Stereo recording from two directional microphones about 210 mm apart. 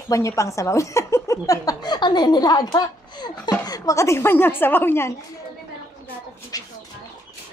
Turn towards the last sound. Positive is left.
turn(degrees=15)  # may be behind; listen again after turning